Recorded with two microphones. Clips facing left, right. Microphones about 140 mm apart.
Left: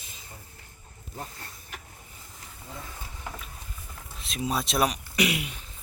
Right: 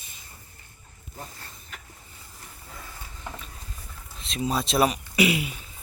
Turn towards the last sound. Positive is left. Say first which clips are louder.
# right 4 dB
turn(degrees=0)  # may be behind; listen again after turning